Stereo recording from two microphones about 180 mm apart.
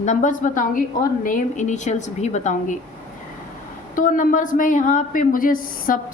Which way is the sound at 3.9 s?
50° left (ahead or behind).